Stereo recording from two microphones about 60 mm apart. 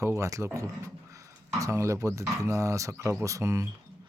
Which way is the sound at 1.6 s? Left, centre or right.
Right.